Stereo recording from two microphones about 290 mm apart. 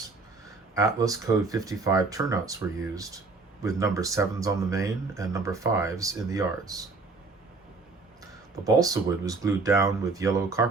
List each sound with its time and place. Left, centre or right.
0.7 s speech: centre
8.2 s speech: centre